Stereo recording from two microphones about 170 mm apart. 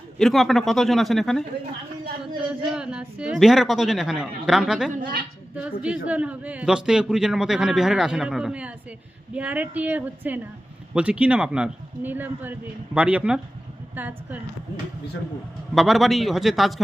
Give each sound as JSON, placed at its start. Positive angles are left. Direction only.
{"t": 0.2, "sound": "a woman's voice", "side_deg": 0}
{"t": 2.5, "sound": "a woman's voice", "side_deg": -5}
{"t": 4.9, "sound": "a woman's voice", "side_deg": -55}
{"t": 5.5, "sound": "a woman's voice", "side_deg": -5}
{"t": 15.7, "sound": "a woman's voice", "side_deg": 0}